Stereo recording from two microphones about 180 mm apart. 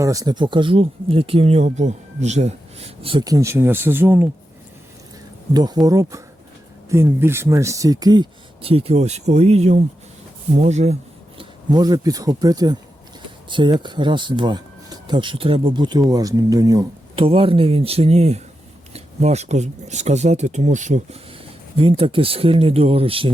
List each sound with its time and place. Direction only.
0.0 s speech: 20° right (ahead or behind)
5.5 s speech: 20° right (ahead or behind); by 10.9 s 40° right (ahead or behind)
11.3 s speech: 20° right (ahead or behind)
17.2 s speech: 30° right (ahead or behind)
21.8 s speech: 30° right (ahead or behind)